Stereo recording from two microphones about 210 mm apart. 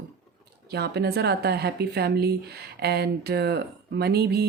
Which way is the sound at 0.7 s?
50° right (ahead or behind).